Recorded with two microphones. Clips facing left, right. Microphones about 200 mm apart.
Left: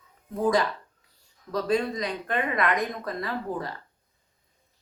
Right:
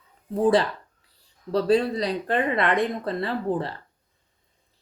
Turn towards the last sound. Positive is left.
turn(degrees=-30)  # may be behind; listen again after turning